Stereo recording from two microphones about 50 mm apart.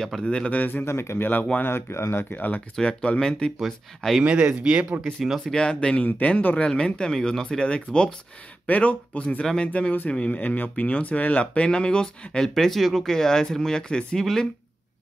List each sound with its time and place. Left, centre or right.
0.2 s speech: centre
0.5 s speech: left
0.8 s speech: left
1.3 s speech: left
1.7 s speech: left
2.3 s speech: left
2.7 s speech: centre
4.2 s speech: right
5.0 s speech: centre
5.5 s speech: centre
6.0 s speech: left
6.5 s speech: centre
8.6 s speech: left
9.4 s speech: centre